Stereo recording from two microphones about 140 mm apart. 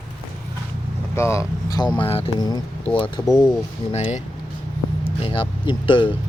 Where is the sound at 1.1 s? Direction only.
20° left (ahead or behind).